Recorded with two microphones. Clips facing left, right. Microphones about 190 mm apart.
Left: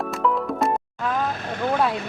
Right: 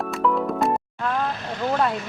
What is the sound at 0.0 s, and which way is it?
Music, centre (ahead or behind).